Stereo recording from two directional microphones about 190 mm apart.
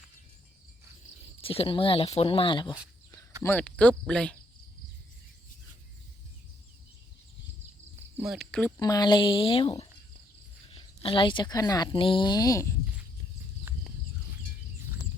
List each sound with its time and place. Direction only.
1.4 s speech: 30° left (ahead or behind)
3.4 s speech: 10° left (ahead or behind)
8.2 s speech: centre (ahead or behind)
8.8 s speech: 20° left (ahead or behind)
13.7 s a sound: 10° right (ahead or behind)